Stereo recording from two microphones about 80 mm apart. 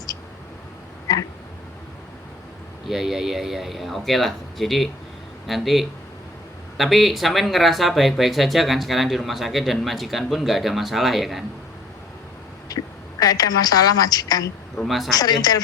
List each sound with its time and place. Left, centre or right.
2.9 s speech: centre
12.6 s a woman's voice: left
14.8 s speech: centre
15.1 s speech: left